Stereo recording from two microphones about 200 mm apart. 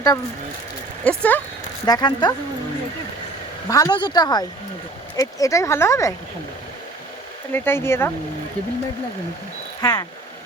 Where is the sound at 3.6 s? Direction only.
15° left (ahead or behind).